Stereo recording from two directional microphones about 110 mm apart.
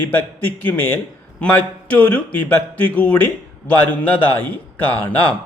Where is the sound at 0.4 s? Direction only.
15° left (ahead or behind).